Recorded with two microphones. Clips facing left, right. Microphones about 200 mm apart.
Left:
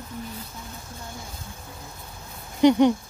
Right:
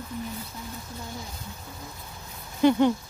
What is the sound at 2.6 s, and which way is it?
Speech, 15° left (ahead or behind).